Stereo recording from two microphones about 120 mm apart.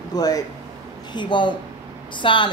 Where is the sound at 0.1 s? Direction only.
30° left (ahead or behind).